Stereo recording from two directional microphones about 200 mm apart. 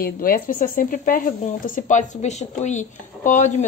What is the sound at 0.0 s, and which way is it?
Speech, 45° left (ahead or behind).